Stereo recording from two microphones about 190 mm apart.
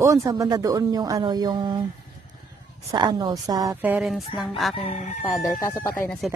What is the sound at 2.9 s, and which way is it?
A woman's voice, 20° right (ahead or behind).